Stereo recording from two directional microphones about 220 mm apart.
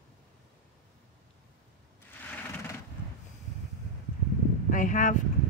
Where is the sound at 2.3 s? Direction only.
10° left (ahead or behind).